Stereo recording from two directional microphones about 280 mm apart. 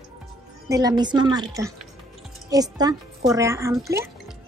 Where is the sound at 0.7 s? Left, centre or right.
Centre.